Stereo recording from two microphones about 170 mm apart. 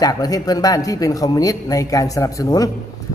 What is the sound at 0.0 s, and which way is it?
A man's voice, 20° left (ahead or behind).